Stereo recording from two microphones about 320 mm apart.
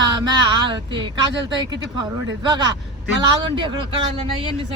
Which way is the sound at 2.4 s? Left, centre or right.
Centre.